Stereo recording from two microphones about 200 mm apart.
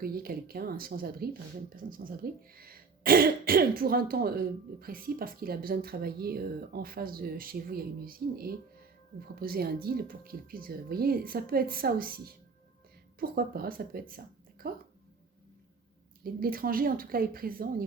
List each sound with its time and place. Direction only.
0.0 s speech: 50° right (ahead or behind)
16.2 s speech: 45° right (ahead or behind)